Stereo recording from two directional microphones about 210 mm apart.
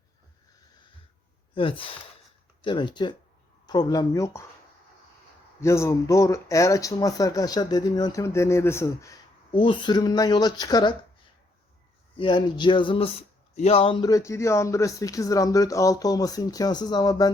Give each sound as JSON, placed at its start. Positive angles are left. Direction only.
{"t": 1.5, "sound": "speech", "side_deg": 25}
{"t": 5.5, "sound": "speech", "side_deg": 15}
{"t": 12.1, "sound": "speech", "side_deg": 20}